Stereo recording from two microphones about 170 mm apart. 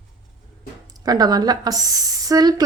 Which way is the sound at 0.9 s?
20° right (ahead or behind).